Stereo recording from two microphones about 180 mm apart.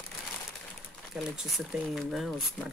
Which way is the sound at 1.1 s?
5° right (ahead or behind).